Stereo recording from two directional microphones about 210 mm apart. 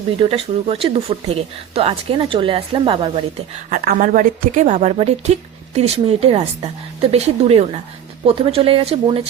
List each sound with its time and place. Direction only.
0.2 s speech: 25° right (ahead or behind)
3.7 s speech: 45° right (ahead or behind); by 9.2 s 25° right (ahead or behind)